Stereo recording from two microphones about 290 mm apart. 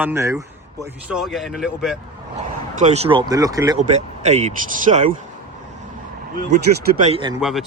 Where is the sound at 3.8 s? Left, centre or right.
Right.